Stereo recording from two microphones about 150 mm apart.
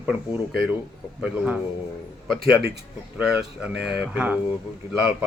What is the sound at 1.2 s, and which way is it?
Speech, 5° right (ahead or behind).